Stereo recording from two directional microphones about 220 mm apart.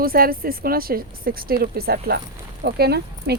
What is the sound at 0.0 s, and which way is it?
Speech, 40° right (ahead or behind).